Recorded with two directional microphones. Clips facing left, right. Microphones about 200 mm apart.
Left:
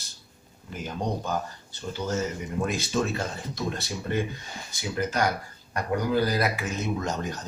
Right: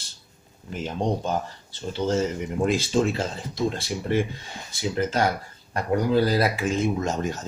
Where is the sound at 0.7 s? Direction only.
25° right (ahead or behind).